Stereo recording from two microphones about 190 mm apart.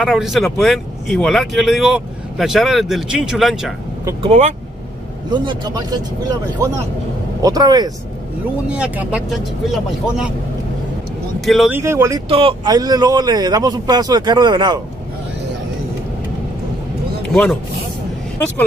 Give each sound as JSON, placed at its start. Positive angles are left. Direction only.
{"t": 0.0, "sound": "speech", "side_deg": 0}
{"t": 4.2, "sound": "speech", "side_deg": -35}
{"t": 5.3, "sound": "speech", "side_deg": -25}
{"t": 7.4, "sound": "speech", "side_deg": -20}
{"t": 8.6, "sound": "speech", "side_deg": -5}
{"t": 11.4, "sound": "speech", "side_deg": 0}
{"t": 11.7, "sound": "speech", "side_deg": -15}
{"t": 12.3, "sound": "speech", "side_deg": -30}
{"t": 17.3, "sound": "speech", "side_deg": 0}